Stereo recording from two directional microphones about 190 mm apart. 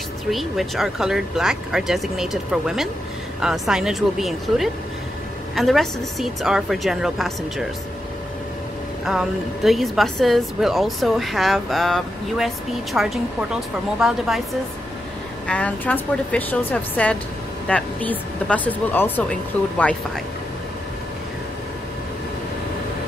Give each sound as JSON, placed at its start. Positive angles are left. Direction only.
{"t": 0.3, "sound": "a woman's voice", "side_deg": 0}
{"t": 9.0, "sound": "a woman's voice", "side_deg": -5}